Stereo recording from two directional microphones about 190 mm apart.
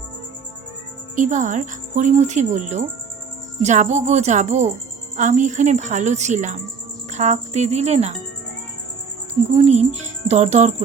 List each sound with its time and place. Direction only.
1.1 s a woman's voice: 40° right (ahead or behind)
9.5 s a woman's voice: 35° right (ahead or behind)